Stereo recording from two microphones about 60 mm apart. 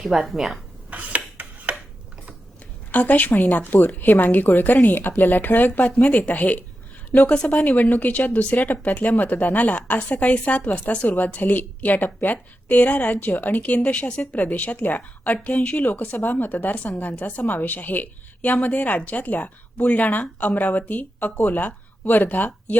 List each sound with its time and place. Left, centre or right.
0.0 s speech: centre
0.9 s a sound: right
2.9 s speech: left
3.3 s speech: left
3.6 s speech: left
6.0 s speech: centre